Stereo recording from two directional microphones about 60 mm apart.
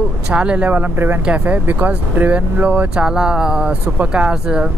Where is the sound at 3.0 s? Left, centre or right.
Centre.